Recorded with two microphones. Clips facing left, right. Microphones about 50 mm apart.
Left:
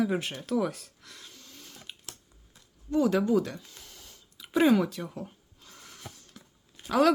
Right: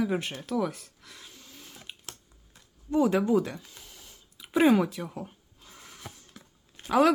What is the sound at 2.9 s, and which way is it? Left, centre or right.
Speech, centre.